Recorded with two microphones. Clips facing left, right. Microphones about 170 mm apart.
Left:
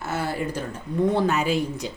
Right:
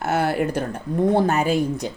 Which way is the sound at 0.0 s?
65° right (ahead or behind).